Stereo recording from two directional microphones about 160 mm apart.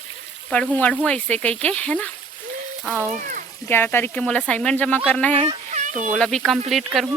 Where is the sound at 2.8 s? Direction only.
5° right (ahead or behind).